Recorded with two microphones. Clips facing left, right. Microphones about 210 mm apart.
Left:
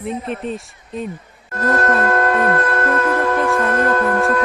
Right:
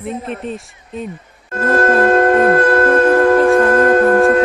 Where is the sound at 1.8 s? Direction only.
45° right (ahead or behind).